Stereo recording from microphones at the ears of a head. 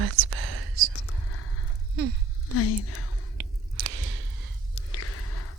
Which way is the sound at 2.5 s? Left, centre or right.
Left.